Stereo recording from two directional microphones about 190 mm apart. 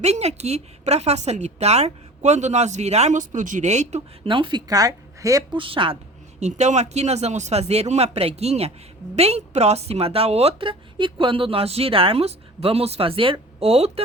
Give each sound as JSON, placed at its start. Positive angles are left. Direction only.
{"t": 0.0, "sound": "a woman's voice", "side_deg": -35}